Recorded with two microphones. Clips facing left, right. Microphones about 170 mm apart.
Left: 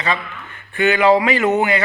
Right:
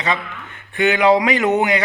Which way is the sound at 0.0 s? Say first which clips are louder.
Even; 20° right (ahead or behind).